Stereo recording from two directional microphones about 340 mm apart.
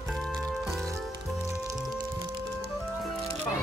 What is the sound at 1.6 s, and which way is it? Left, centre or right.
Music, centre.